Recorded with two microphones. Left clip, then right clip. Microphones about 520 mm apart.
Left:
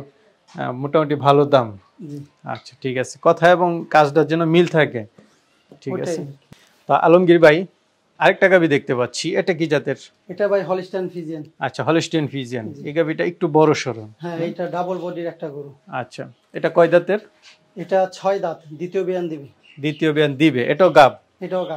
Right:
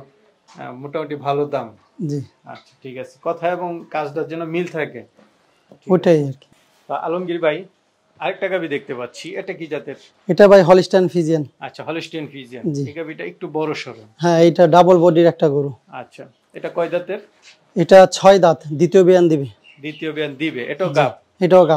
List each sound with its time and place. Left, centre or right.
0.6 s speech: left
5.9 s speech: right
6.9 s a man's voice: left
8.2 s speech: left
10.2 s speech: right
11.6 s speech: left
14.1 s speech: right
14.7 s speech: right
15.9 s speech: left
17.7 s speech: right
19.8 s speech: left
21.4 s speech: right